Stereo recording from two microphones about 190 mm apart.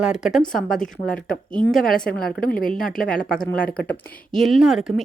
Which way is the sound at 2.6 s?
5° left (ahead or behind).